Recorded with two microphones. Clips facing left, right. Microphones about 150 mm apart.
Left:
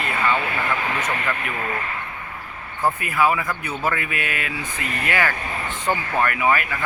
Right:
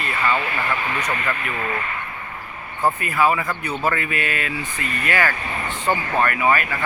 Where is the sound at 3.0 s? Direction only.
10° left (ahead or behind).